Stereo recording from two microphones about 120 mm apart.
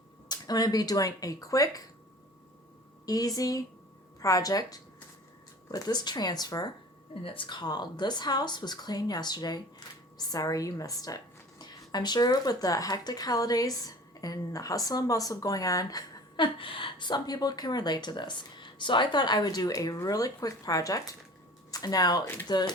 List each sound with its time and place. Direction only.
0.3 s speech: 35° left (ahead or behind)
3.1 s a woman's voice: 30° left (ahead or behind)